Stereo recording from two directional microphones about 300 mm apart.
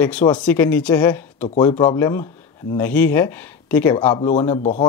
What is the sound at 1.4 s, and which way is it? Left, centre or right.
Speech, left.